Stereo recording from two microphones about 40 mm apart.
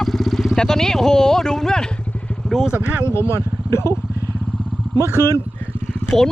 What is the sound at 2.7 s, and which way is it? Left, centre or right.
Speech, right.